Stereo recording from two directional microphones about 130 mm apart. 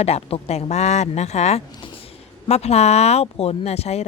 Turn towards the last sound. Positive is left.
turn(degrees=55)  # may be behind; listen again after turning